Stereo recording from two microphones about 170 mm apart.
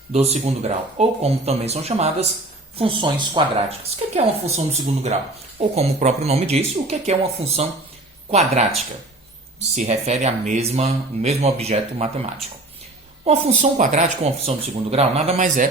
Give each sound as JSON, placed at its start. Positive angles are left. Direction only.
{"t": 0.1, "sound": "speech", "side_deg": -40}